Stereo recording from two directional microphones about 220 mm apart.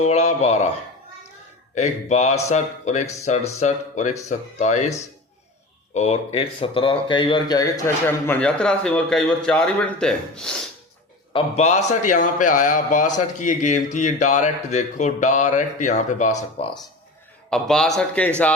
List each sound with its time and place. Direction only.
0.0 s a man's voice: 30° left (ahead or behind)
1.7 s a man's voice: 30° left (ahead or behind); by 10.7 s 5° left (ahead or behind)
11.3 s a man's voice: 30° left (ahead or behind)
17.5 s a man's voice: 5° left (ahead or behind)